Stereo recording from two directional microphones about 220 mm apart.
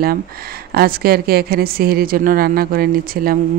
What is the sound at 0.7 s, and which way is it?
Speech, 45° right (ahead or behind).